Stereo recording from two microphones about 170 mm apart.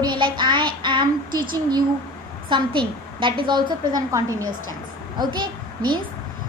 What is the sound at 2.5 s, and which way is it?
A child's voice, 30° right (ahead or behind).